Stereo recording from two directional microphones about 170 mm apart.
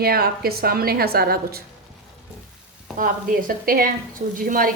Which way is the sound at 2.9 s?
55° right (ahead or behind).